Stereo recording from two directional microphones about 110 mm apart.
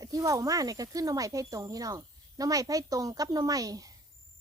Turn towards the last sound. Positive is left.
turn(degrees=-30)  # may be behind; listen again after turning